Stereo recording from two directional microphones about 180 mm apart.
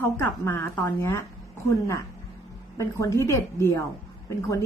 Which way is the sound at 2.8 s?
15° left (ahead or behind).